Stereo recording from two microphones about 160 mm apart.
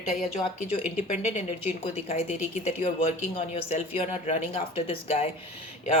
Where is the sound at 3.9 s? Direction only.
45° left (ahead or behind).